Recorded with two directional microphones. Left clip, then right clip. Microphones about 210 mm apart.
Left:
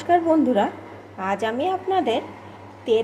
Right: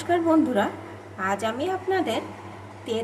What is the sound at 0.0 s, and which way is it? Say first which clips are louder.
A woman's voice: left 3 dB; 20° left (ahead or behind).